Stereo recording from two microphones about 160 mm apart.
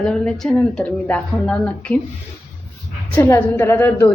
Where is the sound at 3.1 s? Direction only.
10° left (ahead or behind).